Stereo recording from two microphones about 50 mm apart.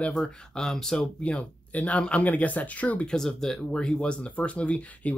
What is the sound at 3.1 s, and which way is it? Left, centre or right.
Speech, centre.